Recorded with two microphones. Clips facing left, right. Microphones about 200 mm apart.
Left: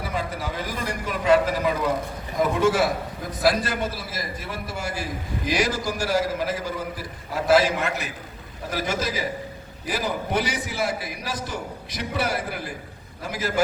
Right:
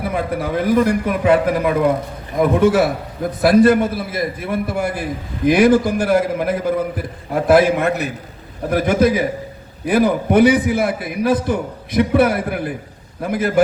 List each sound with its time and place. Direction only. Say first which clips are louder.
0.0 s a man's voice: right 8 dB; 55° right (ahead or behind)